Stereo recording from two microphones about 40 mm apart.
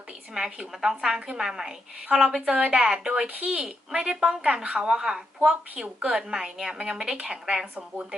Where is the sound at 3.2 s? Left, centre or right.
Right.